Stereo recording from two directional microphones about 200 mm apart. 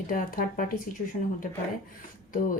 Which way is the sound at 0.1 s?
45° left (ahead or behind).